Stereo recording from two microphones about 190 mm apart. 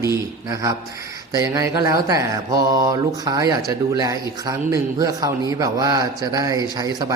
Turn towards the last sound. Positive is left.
turn(degrees=-20)  # may be behind; listen again after turning